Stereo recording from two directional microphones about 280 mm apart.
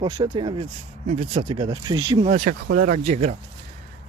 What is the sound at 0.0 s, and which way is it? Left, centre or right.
Speech, centre.